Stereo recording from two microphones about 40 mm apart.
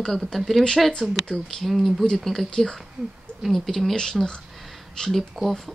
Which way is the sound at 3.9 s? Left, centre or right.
Centre.